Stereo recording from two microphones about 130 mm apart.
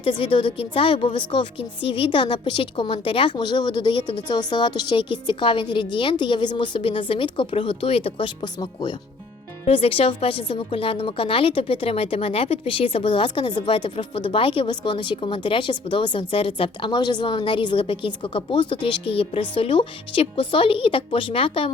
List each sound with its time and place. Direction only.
0.0 s a woman's voice: 40° left (ahead or behind)
9.6 s a woman's voice: 45° left (ahead or behind)